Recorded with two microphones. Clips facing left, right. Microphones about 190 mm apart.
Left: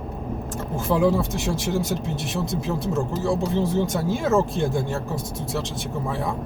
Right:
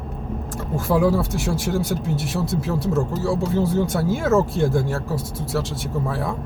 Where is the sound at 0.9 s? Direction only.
20° left (ahead or behind).